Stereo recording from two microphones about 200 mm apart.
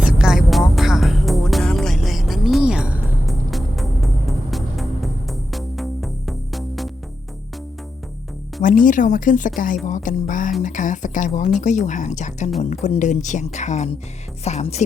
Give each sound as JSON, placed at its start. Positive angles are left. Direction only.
{"t": 0.0, "sound": "music", "side_deg": -5}
{"t": 8.6, "sound": "speech", "side_deg": 40}